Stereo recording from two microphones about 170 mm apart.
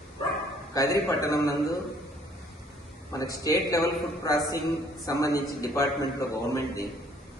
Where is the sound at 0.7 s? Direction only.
20° left (ahead or behind).